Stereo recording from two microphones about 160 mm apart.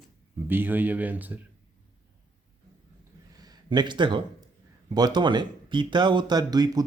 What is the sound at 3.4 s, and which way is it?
Speech, 25° right (ahead or behind).